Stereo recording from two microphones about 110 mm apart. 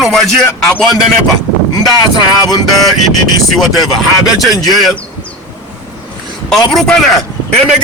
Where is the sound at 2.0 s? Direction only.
35° left (ahead or behind).